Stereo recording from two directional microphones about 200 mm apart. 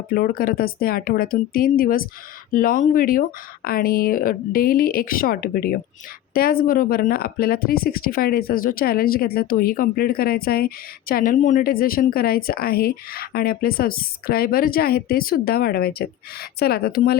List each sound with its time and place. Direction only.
0.1 s a woman's voice: 45° left (ahead or behind)